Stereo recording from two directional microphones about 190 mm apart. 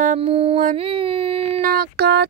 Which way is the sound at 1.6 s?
50° right (ahead or behind).